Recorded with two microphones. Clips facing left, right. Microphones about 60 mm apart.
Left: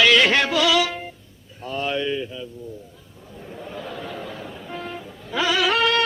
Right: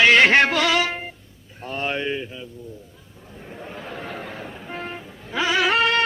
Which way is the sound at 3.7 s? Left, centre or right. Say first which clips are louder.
Left 1 dB; right.